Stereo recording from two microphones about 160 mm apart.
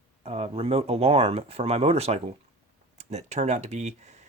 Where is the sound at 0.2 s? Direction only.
40° right (ahead or behind).